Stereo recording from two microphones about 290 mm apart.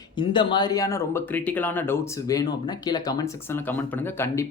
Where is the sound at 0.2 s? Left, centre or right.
Centre.